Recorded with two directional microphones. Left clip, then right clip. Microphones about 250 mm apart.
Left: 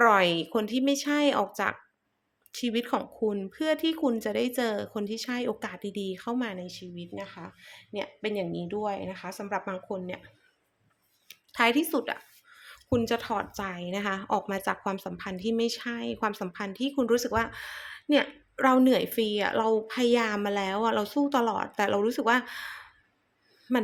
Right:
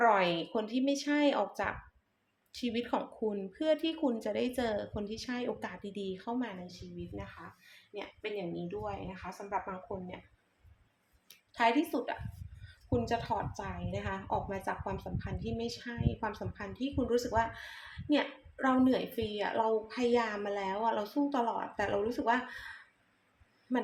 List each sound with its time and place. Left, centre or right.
0.0 s speech: left
11.5 s a woman's voice: left